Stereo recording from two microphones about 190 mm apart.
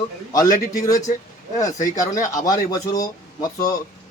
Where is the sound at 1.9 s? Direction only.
15° left (ahead or behind).